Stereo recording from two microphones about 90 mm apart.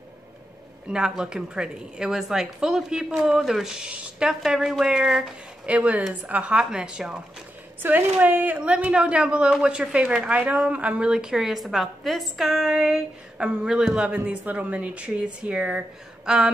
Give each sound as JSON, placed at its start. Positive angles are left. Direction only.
{"t": 0.8, "sound": "a woman's voice", "side_deg": -10}
{"t": 7.8, "sound": "a woman's voice", "side_deg": -20}